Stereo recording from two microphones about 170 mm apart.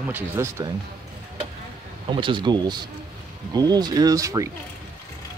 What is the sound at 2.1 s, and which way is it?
Speech, 30° right (ahead or behind).